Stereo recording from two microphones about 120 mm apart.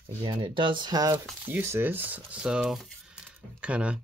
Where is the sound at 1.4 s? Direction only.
20° right (ahead or behind).